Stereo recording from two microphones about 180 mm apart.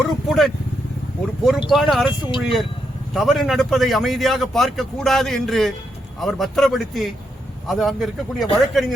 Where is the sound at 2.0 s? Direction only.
25° left (ahead or behind).